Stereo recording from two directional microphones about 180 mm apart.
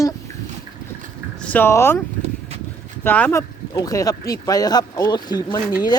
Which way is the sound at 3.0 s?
10° left (ahead or behind).